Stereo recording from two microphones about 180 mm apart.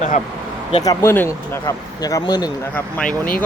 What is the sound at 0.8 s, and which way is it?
Speech, 20° left (ahead or behind).